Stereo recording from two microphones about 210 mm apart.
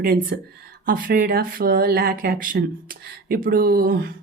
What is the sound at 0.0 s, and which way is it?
Speech, 45° right (ahead or behind).